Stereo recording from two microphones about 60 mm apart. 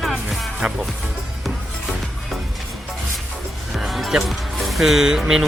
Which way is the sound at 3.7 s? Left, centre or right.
Centre.